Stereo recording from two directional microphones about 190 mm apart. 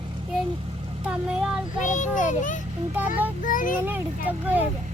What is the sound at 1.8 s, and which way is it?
Child singing, 40° left (ahead or behind).